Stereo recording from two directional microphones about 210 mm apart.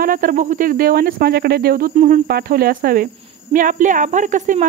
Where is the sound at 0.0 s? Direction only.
40° right (ahead or behind).